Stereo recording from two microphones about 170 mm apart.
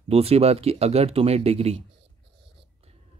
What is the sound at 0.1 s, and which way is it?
Speech, 35° right (ahead or behind).